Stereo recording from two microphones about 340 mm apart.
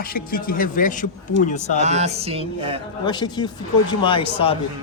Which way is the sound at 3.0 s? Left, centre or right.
Centre.